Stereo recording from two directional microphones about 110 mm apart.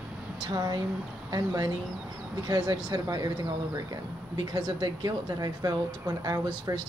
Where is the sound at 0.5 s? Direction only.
35° right (ahead or behind).